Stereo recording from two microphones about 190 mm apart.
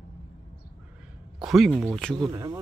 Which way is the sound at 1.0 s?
5° right (ahead or behind).